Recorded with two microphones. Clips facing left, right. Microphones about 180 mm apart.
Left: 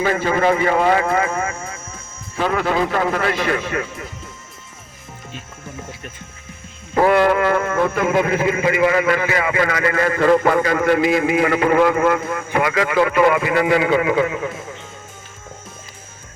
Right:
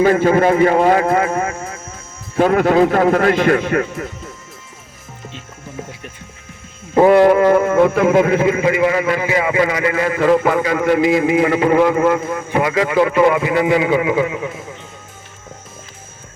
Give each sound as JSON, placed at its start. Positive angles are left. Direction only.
{"t": 0.0, "sound": "a man's voice", "side_deg": -45}
{"t": 6.9, "sound": "a man's voice", "side_deg": -20}
{"t": 8.6, "sound": "a man's voice", "side_deg": -15}